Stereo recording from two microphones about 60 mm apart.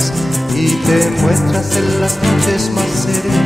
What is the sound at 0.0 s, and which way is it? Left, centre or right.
Music, centre.